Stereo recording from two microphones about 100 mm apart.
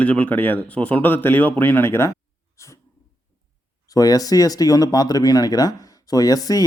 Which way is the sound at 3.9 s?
35° left (ahead or behind).